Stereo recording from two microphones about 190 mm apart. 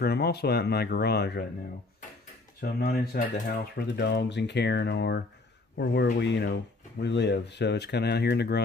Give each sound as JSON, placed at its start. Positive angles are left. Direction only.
{"t": 0.0, "sound": "speech", "side_deg": 55}
{"t": 2.6, "sound": "speech", "side_deg": 55}